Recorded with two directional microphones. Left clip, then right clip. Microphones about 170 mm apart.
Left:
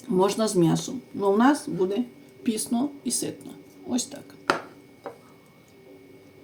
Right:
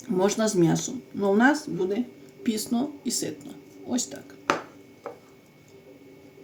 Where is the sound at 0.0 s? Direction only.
15° right (ahead or behind).